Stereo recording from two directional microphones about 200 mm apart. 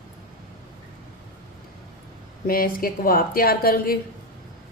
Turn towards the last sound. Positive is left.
turn(degrees=45)  # may be behind; listen again after turning